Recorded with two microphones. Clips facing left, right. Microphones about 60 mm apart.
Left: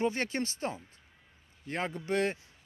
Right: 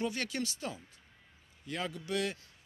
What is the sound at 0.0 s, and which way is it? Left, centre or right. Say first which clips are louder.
Speech: left 4 dB; left.